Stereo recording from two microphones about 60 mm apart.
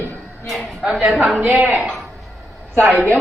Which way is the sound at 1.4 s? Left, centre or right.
Right.